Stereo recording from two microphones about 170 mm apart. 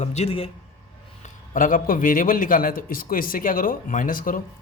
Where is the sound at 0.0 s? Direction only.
40° left (ahead or behind).